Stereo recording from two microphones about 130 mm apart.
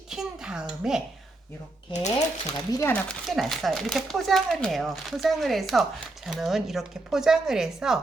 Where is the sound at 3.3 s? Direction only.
Centre (ahead or behind).